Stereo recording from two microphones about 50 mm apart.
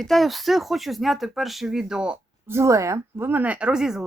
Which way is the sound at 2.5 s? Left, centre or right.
Right.